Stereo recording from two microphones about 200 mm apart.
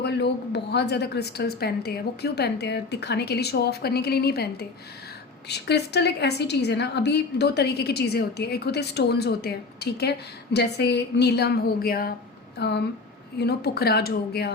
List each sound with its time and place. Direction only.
0.0 s a woman's voice: 55° left (ahead or behind)
5.5 s a woman's voice: 55° left (ahead or behind)